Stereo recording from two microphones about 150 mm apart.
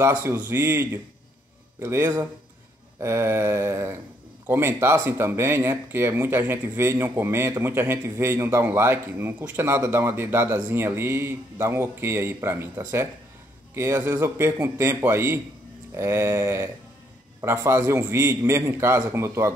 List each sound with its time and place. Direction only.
0.0 s speech: 15° right (ahead or behind)